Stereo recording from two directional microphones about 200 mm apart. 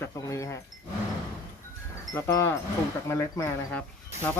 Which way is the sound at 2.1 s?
15° left (ahead or behind).